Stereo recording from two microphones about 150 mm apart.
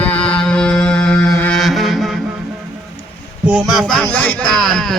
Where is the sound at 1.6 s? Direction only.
Centre (ahead or behind).